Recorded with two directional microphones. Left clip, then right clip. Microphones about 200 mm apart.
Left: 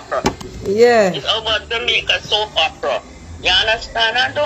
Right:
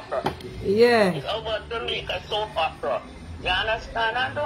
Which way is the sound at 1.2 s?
40° left (ahead or behind).